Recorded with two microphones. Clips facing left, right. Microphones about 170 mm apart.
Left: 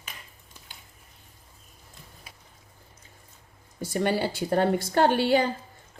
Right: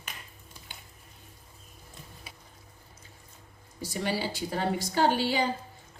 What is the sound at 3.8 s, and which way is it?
A woman's voice, 50° left (ahead or behind).